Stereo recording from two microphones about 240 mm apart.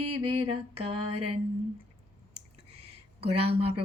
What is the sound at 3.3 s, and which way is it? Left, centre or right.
Music, right.